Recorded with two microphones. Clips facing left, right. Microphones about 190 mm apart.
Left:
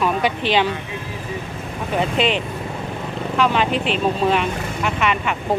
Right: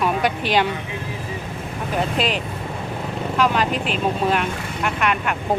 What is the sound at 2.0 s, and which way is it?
Speech, 5° right (ahead or behind).